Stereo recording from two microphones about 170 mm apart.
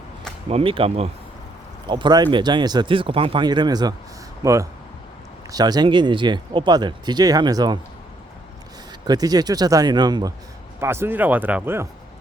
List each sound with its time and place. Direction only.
0.5 s speech: 30° right (ahead or behind)
1.9 s speech: 25° right (ahead or behind)
9.0 s speech: 20° right (ahead or behind)
10.8 s speech: 15° right (ahead or behind)